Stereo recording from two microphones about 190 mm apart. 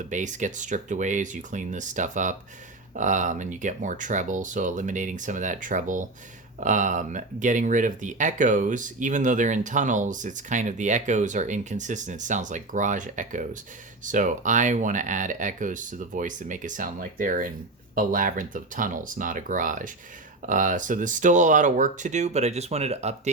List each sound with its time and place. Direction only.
0.0 s speech: 40° right (ahead or behind)